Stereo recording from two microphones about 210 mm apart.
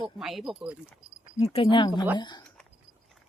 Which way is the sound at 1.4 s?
25° left (ahead or behind).